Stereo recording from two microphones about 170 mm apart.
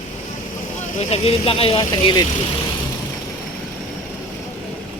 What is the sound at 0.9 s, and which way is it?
Speech, 35° left (ahead or behind).